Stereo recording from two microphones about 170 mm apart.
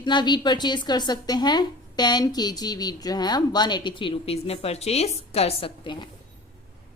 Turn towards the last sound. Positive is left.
turn(degrees=30)  # may be behind; listen again after turning